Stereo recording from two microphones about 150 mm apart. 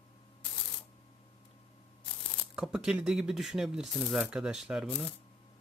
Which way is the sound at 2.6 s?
5° right (ahead or behind).